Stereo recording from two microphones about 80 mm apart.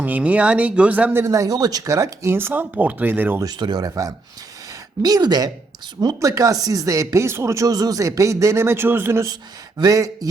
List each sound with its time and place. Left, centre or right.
0.0 s speech: centre
1.3 s speech: right
3.4 s a woman's voice: right
6.1 s speech: right
9.2 s speech: right